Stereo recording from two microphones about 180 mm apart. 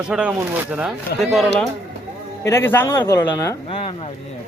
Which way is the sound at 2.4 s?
15° left (ahead or behind).